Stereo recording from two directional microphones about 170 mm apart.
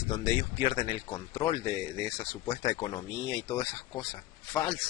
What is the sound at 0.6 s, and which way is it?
Speech, 30° left (ahead or behind).